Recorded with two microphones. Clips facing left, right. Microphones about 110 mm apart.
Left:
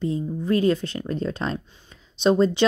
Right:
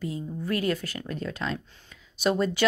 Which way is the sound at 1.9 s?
25° left (ahead or behind).